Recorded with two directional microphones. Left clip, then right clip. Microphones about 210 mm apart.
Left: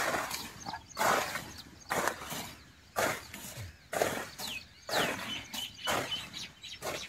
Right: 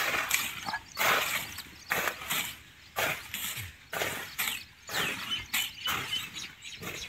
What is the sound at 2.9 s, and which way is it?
Vehicle, 15° left (ahead or behind).